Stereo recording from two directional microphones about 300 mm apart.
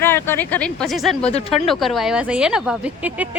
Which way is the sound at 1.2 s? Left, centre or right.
Left.